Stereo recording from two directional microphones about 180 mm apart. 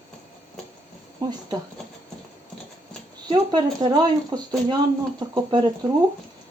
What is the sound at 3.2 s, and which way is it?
Speech, 20° right (ahead or behind).